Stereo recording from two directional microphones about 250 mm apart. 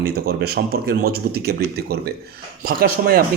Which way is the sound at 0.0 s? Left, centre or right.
Right.